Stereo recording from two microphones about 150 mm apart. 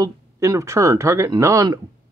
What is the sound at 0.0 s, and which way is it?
Speech, 20° right (ahead or behind).